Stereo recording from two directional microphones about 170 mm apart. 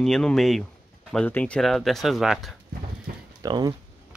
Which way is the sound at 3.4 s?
25° right (ahead or behind).